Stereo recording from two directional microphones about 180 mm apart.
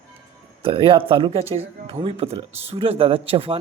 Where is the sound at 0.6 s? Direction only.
30° right (ahead or behind).